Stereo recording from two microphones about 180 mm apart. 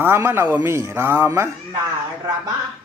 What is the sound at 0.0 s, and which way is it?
A man's voice, 15° right (ahead or behind).